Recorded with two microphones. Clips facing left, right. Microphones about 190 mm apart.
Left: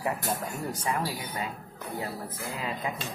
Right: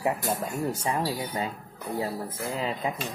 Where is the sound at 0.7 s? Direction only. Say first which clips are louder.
Even; 25° right (ahead or behind).